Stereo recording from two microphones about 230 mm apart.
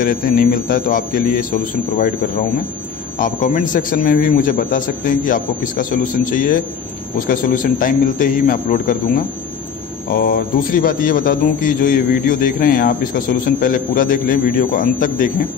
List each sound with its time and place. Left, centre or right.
0.0 s a man's voice: left
3.2 s a man's voice: left
10.2 s a man's voice: left